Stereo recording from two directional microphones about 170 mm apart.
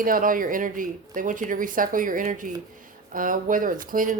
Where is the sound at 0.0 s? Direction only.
55° right (ahead or behind).